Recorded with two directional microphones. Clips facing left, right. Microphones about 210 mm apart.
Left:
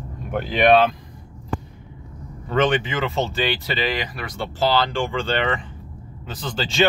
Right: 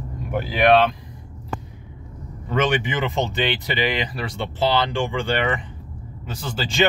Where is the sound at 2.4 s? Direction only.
15° right (ahead or behind).